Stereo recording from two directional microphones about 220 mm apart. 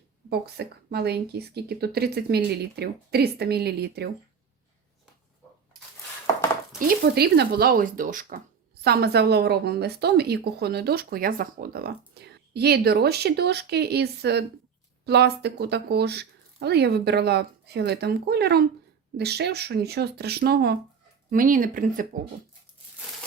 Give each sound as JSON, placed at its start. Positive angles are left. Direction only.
{"t": 0.3, "sound": "speech", "side_deg": -45}
{"t": 6.7, "sound": "speech", "side_deg": -45}